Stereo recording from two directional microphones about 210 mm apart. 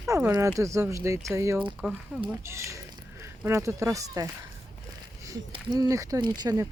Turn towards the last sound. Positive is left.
turn(degrees=-15)  # may be behind; listen again after turning